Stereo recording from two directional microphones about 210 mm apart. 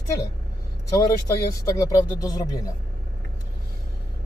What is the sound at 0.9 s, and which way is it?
Speech, 15° left (ahead or behind).